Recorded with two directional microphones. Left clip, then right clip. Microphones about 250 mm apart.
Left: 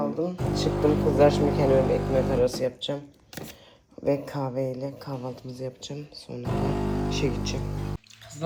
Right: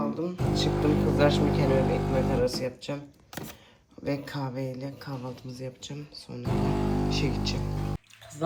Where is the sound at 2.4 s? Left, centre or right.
Right.